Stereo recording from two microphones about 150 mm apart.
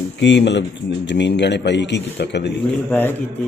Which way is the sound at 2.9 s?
15° left (ahead or behind).